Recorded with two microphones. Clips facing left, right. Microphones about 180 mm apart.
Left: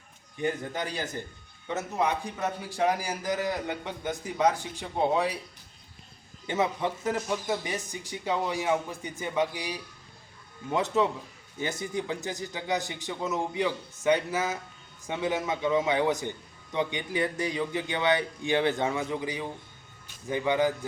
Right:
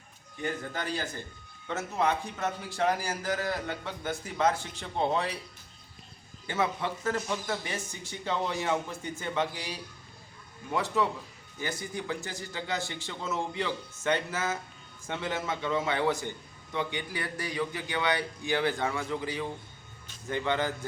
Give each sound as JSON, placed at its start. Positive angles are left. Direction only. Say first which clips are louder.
{"t": 0.4, "sound": "a man's voice", "louder": "left 3 dB", "side_deg": 15}
{"t": 6.5, "sound": "a man's voice", "louder": "left 3 dB", "side_deg": 20}